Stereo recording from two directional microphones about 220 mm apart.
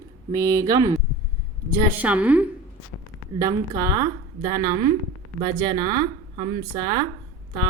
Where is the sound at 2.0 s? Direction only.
5° right (ahead or behind).